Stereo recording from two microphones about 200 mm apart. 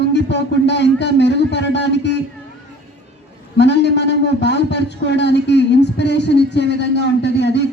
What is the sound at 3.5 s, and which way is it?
A man's voice, 60° left (ahead or behind).